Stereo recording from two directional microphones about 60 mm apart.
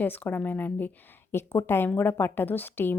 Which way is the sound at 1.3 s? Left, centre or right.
Left.